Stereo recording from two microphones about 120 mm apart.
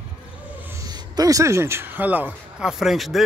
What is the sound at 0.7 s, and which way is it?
Speech, 30° right (ahead or behind).